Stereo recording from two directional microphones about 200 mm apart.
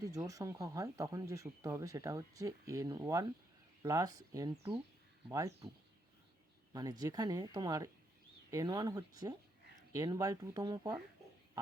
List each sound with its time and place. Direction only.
0.0 s speech: 15° right (ahead or behind)
6.7 s speech: 20° right (ahead or behind)